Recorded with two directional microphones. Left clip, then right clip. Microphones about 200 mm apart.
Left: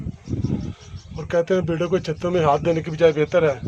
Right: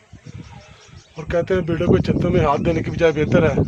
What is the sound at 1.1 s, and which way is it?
Speech, 5° right (ahead or behind).